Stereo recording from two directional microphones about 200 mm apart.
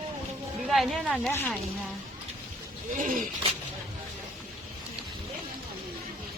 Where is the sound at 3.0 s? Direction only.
40° right (ahead or behind).